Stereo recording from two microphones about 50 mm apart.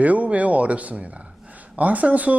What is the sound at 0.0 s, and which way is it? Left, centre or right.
A man's voice, right.